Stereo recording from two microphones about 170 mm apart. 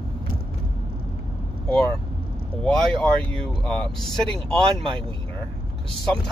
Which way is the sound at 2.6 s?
5° left (ahead or behind).